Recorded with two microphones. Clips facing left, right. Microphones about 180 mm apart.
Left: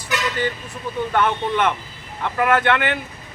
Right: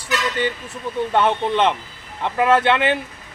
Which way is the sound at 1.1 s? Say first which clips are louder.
Right 2 dB; 25° right (ahead or behind).